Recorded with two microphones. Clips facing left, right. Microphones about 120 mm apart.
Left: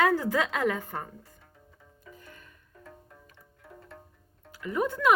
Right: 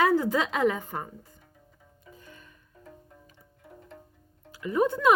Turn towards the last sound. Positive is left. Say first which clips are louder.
# right 3 dB
turn(degrees=-25)  # may be behind; listen again after turning